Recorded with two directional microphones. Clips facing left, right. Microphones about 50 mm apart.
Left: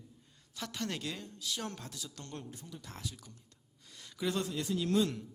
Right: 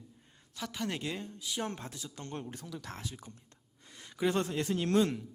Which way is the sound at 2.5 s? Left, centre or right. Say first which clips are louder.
Right 5 dB; right.